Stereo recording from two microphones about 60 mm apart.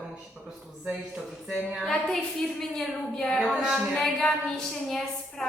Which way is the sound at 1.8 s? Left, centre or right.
Centre.